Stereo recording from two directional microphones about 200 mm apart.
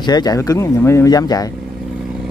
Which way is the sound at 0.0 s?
20° left (ahead or behind).